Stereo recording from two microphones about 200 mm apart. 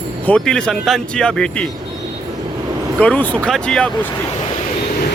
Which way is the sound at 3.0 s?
5° left (ahead or behind).